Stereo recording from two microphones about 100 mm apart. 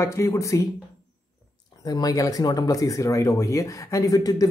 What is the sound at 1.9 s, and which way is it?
Speech, 40° left (ahead or behind).